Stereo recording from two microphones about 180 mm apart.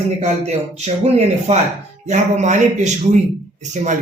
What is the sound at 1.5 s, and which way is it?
A man's voice, 35° right (ahead or behind).